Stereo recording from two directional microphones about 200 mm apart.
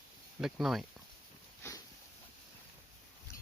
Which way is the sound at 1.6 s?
15° left (ahead or behind).